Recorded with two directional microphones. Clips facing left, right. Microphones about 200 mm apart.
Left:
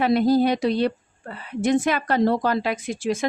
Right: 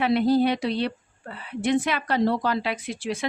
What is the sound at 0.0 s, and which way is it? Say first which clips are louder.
A woman's voice: left 2 dB; 40° left (ahead or behind).